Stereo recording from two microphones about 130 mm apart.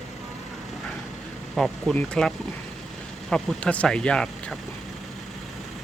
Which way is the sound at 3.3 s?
10° left (ahead or behind).